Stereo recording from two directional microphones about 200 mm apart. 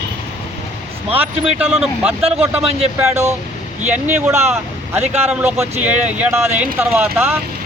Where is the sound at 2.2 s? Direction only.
30° right (ahead or behind).